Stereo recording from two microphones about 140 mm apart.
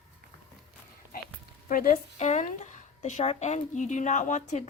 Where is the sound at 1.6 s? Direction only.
90° left.